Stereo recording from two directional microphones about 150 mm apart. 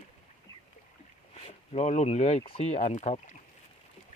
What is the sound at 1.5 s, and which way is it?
Speech, 45° left (ahead or behind).